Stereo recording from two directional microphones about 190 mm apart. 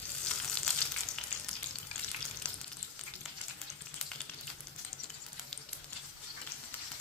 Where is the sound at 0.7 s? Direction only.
5° left (ahead or behind).